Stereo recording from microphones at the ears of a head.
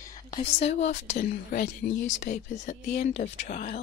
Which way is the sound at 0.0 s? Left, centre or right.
Left.